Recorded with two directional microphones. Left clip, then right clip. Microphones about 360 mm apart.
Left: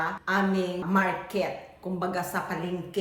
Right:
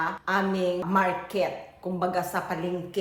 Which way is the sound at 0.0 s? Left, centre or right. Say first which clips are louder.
Right 1 dB; centre.